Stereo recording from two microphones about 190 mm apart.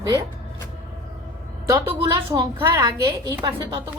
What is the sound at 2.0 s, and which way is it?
Speech, 25° right (ahead or behind).